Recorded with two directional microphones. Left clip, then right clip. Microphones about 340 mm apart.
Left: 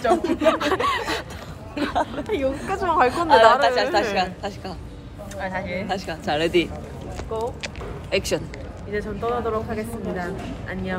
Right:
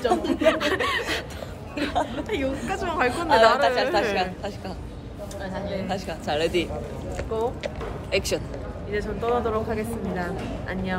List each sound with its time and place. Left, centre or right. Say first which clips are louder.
0.4 s a woman's voice: left 2 dB; centre
5.9 s speech: left 3 dB; left
7.3 s speech: even; centre
8.1 s speech: left 2 dB; centre
8.9 s speech: even; centre